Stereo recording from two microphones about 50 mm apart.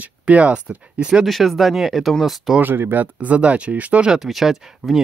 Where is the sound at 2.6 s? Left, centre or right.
Right.